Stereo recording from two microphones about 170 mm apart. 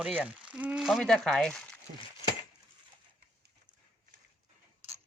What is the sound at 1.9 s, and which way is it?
Chink, 50° right (ahead or behind).